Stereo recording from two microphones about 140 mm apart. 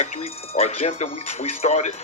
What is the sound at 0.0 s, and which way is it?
Speech, 50° left (ahead or behind).